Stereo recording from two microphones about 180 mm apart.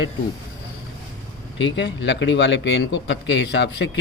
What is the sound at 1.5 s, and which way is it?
A man's voice, 85° left.